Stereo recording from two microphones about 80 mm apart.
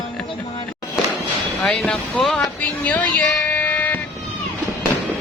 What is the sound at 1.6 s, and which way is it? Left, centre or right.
Speech, centre.